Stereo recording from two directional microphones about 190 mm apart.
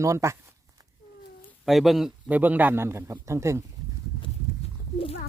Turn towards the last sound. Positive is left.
turn(degrees=30)  # may be behind; listen again after turning